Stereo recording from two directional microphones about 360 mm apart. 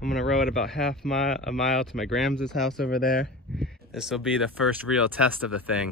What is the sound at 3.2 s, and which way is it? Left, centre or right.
Speech, centre.